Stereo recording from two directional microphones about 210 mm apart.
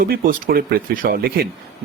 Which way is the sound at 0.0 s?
40° right (ahead or behind).